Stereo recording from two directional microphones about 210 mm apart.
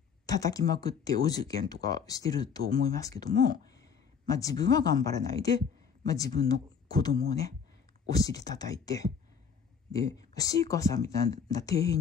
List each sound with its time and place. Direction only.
0.3 s speech: 15° left (ahead or behind)